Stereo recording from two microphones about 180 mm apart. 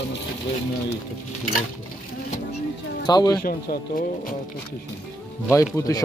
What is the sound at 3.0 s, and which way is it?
Speech, 20° left (ahead or behind).